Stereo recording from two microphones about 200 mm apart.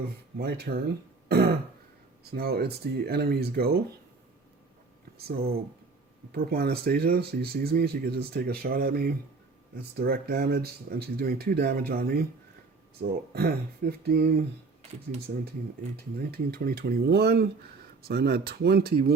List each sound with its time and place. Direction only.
0.3 s speech: 50° right (ahead or behind)
1.3 s throat clearing: 50° right (ahead or behind)
2.3 s speech: 50° right (ahead or behind)
5.2 s speech: 50° right (ahead or behind)
16.3 s speech: 50° right (ahead or behind)